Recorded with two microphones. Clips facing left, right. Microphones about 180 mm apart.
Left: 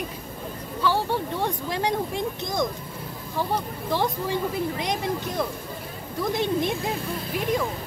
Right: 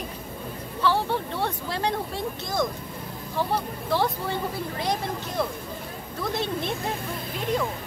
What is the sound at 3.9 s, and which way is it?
Speech, 15° left (ahead or behind).